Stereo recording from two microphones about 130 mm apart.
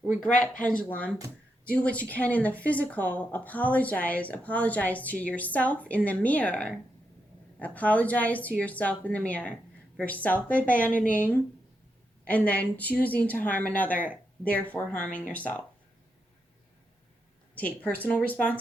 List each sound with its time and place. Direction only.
0.3 s speech: 90° left
0.9 s a woman's voice: 10° left (ahead or behind)
12.2 s a woman's voice: 10° left (ahead or behind)
17.5 s a woman's voice: 10° left (ahead or behind)